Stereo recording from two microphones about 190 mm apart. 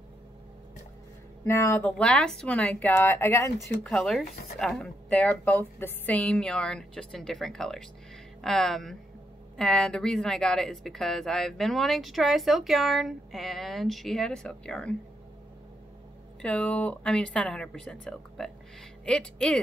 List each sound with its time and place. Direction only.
1.4 s speech: 15° left (ahead or behind)
3.5 s speech: centre (ahead or behind)
16.3 s speech: 5° left (ahead or behind)